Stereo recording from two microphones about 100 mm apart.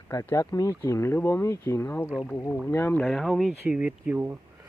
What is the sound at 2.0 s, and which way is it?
Speech, 5° right (ahead or behind).